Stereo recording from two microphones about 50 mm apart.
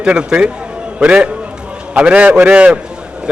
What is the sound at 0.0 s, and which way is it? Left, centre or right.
A man's voice, centre.